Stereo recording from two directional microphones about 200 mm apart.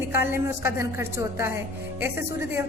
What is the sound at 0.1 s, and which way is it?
A woman's voice, 10° right (ahead or behind).